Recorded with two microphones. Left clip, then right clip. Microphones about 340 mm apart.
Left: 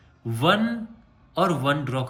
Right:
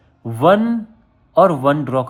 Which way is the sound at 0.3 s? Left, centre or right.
Centre.